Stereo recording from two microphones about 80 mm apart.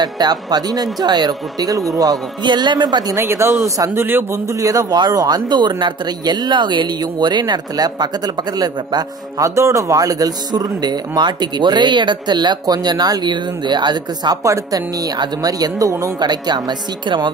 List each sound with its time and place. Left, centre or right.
0.0 s a man's voice: right
2.4 s speech: right
3.2 s speech: right
3.6 s speech: right
3.9 s a man's voice: right
4.5 s speech: right
4.9 s a man's voice: right
9.4 s a man's voice: right
14.4 s speech: right
16.2 s a man's voice: right